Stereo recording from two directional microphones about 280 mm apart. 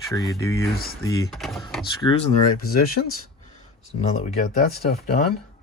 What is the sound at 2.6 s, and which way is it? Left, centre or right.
Speech, left.